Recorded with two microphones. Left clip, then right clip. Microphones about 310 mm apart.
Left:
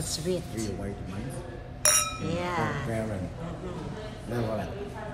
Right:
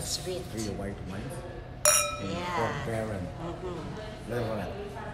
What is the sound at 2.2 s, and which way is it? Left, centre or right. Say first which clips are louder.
Speech: left 1 dB; centre.